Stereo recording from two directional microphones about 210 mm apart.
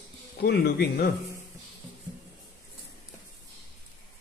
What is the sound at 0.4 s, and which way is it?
Speech, 50° left (ahead or behind).